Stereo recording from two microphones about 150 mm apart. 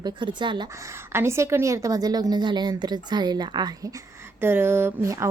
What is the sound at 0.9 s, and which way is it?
Speech, 15° right (ahead or behind).